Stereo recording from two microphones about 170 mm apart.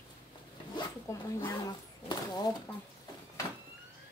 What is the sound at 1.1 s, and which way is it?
Speech, 15° left (ahead or behind).